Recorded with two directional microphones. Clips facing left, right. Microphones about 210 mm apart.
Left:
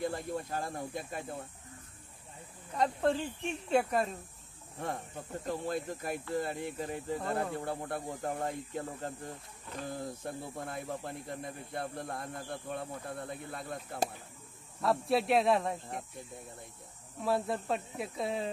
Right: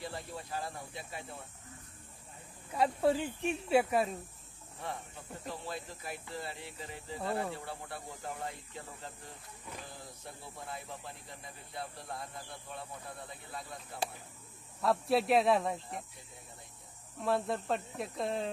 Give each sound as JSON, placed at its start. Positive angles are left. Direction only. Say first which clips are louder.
{"t": 0.0, "sound": "speech", "louder": "left 7 dB", "side_deg": 50}
{"t": 2.7, "sound": "speech", "louder": "right 1 dB", "side_deg": -5}
{"t": 4.7, "sound": "speech", "louder": "left 4 dB", "side_deg": 45}
{"t": 14.8, "sound": "speech", "louder": "even", "side_deg": 0}
{"t": 17.2, "sound": "speech", "louder": "left 1 dB", "side_deg": 0}